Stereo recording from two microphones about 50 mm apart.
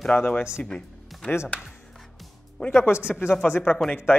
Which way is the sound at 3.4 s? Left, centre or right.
Left.